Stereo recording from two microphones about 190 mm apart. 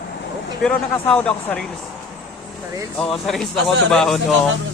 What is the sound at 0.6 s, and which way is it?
Speech, 5° left (ahead or behind).